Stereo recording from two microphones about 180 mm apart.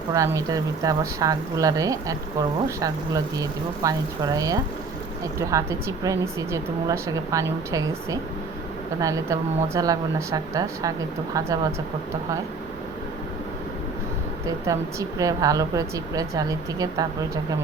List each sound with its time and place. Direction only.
0.1 s a woman's voice: 20° right (ahead or behind)
3.3 s a woman's voice: 20° right (ahead or behind)
14.4 s a woman's voice: 20° right (ahead or behind)